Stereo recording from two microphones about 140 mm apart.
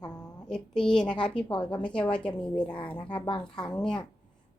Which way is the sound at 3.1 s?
35° left (ahead or behind).